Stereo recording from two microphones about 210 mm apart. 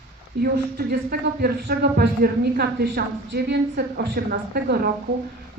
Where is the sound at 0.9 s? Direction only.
50° right (ahead or behind).